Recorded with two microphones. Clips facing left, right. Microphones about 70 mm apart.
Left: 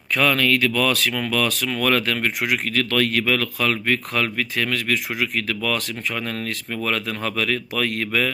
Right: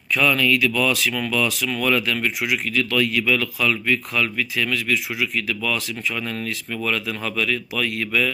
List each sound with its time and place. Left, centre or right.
0.1 s speech: left